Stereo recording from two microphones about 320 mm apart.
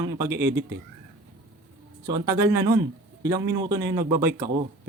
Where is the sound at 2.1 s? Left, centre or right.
Centre.